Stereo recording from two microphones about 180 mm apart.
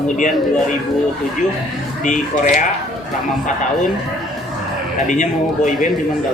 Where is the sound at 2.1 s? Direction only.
45° left (ahead or behind).